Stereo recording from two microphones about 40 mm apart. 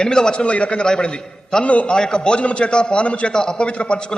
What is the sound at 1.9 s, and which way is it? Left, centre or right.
A man's voice, left.